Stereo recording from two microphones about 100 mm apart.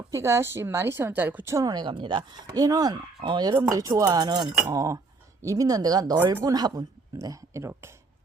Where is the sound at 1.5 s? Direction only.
40° right (ahead or behind).